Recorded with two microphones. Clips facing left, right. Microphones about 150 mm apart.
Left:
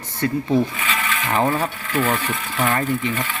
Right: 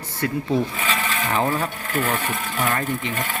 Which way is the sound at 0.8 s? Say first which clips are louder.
Even; 40° right (ahead or behind).